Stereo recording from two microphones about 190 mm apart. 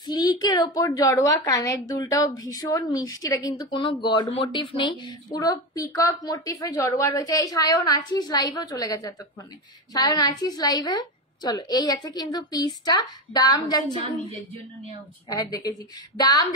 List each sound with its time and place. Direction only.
0.0 s a woman's voice: 20° left (ahead or behind)
15.2 s a woman's voice: 20° left (ahead or behind)